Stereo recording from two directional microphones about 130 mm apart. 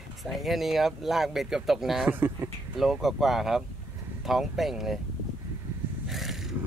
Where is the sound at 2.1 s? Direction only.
15° right (ahead or behind).